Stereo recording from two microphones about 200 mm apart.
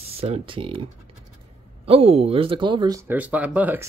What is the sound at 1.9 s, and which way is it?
Speech, 30° right (ahead or behind).